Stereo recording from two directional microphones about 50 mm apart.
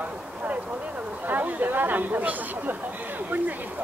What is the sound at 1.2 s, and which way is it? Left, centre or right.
Chatter, right.